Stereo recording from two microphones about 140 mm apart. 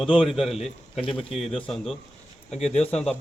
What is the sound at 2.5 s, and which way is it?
Speech, 50° left (ahead or behind).